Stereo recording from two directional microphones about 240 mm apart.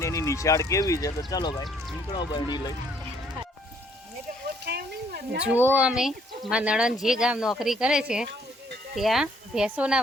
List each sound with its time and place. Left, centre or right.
0.0 s speech: centre
4.6 s speech: right
5.4 s speech: centre